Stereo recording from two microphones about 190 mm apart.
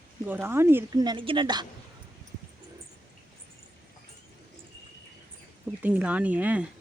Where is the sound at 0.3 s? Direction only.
10° right (ahead or behind).